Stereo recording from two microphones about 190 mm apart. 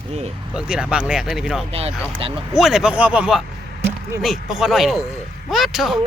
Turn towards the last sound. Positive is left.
turn(degrees=0)  # may be behind; listen again after turning